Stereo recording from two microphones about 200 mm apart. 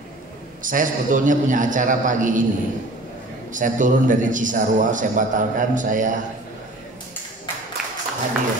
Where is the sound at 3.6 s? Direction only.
40° right (ahead or behind).